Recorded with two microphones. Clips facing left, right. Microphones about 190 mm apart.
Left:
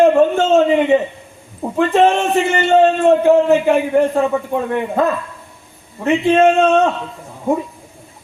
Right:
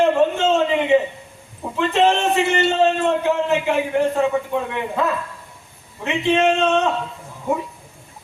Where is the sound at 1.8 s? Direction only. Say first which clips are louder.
Left 4 dB; 50° left (ahead or behind).